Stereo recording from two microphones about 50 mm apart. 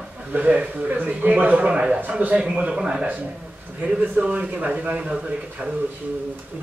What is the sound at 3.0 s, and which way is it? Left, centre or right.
A man's voice, right.